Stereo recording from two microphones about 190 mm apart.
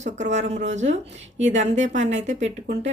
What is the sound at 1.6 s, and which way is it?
Speech, 35° right (ahead or behind).